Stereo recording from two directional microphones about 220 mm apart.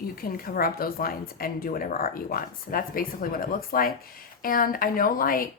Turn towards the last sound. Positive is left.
turn(degrees=40)  # may be behind; listen again after turning